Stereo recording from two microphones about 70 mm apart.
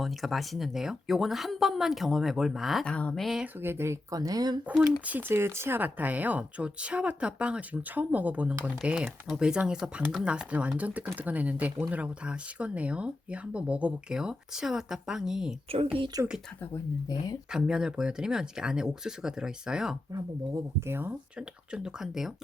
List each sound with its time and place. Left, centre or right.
0.0 s speech: centre
2.8 s speech: centre
3.2 s speech: centre
3.4 s speech: right
4.1 s speech: right
4.7 s speech: centre
5.3 s a woman's voice: right; by 15.5 s centre
16.1 s speech: right
17.5 s speech: centre
20.8 s speech: right
21.3 s speech: centre